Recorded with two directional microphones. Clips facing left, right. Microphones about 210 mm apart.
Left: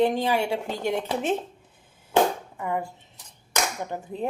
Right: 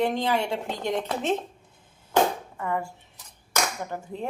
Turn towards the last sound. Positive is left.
turn(degrees=20)  # may be behind; listen again after turning